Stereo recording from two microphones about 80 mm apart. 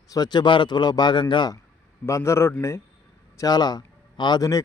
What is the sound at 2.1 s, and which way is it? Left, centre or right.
Speech, left.